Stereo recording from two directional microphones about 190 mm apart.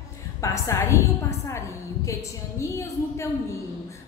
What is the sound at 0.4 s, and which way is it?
Speech, 15° left (ahead or behind).